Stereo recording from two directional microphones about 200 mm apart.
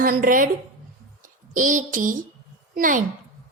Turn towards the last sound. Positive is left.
turn(degrees=-40)  # may be behind; listen again after turning